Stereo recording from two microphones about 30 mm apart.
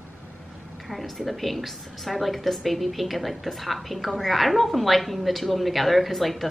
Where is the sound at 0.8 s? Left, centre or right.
Centre.